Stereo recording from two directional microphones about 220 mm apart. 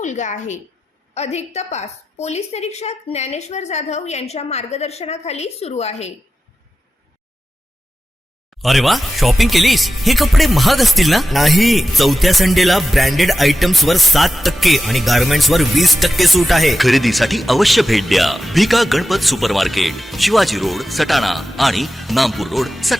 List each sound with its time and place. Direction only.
0.0 s a woman's voice: 35° left (ahead or behind)
8.6 s speech: centre (ahead or behind)